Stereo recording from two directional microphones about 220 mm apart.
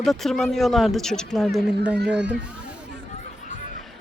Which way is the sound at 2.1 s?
50° right (ahead or behind).